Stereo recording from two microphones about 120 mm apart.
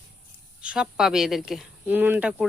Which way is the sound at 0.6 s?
10° right (ahead or behind).